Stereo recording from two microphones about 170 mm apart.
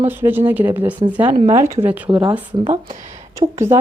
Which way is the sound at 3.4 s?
35° right (ahead or behind).